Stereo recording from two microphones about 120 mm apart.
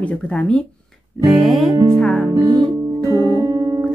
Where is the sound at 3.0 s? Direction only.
30° right (ahead or behind).